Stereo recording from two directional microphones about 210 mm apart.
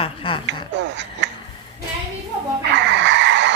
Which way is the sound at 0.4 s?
55° right (ahead or behind).